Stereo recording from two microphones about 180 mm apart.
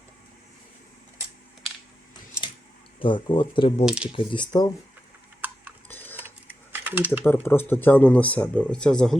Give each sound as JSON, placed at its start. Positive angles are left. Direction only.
{"t": 3.0, "sound": "speech", "side_deg": 25}
{"t": 3.8, "sound": "speech", "side_deg": -5}
{"t": 4.1, "sound": "speech", "side_deg": 30}
{"t": 5.9, "sound": "cutlery", "side_deg": 10}
{"t": 6.8, "sound": "a sound", "side_deg": -10}
{"t": 7.1, "sound": "speech", "side_deg": 10}